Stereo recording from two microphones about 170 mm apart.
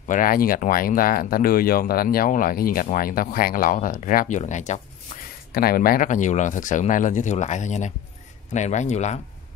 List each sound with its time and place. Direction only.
0.1 s speech: 55° left (ahead or behind)
5.5 s speech: 65° left (ahead or behind); by 9.2 s 45° left (ahead or behind)